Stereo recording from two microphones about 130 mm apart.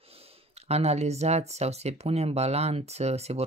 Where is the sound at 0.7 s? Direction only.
55° right (ahead or behind).